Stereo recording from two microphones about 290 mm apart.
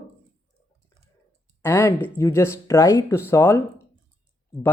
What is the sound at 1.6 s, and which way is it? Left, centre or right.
Speech, centre.